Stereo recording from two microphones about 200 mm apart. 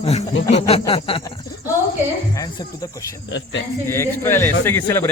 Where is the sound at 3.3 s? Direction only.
70° left (ahead or behind).